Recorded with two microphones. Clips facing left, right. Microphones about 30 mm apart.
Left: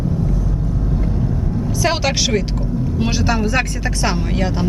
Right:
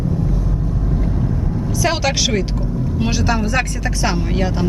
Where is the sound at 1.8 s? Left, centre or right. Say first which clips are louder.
Even; centre.